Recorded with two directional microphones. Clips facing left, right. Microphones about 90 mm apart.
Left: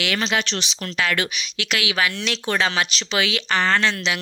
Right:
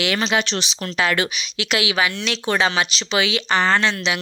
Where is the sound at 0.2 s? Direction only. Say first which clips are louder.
Right 2 dB; 15° right (ahead or behind).